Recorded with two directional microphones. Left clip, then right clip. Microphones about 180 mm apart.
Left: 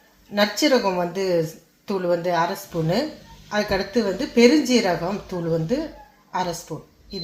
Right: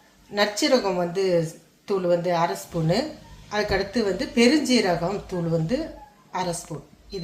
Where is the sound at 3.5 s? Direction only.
30° left (ahead or behind).